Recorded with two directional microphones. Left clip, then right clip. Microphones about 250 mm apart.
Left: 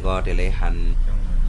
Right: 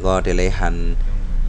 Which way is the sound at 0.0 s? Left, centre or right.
Right.